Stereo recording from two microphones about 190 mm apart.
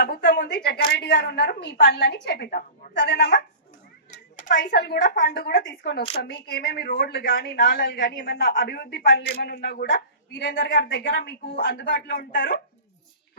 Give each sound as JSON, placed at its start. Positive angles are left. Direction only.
{"t": 0.0, "sound": "speech", "side_deg": 65}
{"t": 2.9, "sound": "speech", "side_deg": 65}
{"t": 4.4, "sound": "speech", "side_deg": 65}
{"t": 7.9, "sound": "speech", "side_deg": 65}